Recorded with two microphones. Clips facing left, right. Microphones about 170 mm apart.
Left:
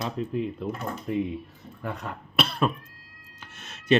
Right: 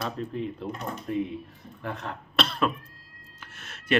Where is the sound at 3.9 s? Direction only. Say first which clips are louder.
Left 3 dB; 20° left (ahead or behind).